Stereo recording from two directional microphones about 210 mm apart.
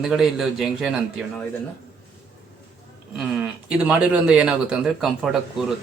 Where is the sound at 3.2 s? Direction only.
5° right (ahead or behind).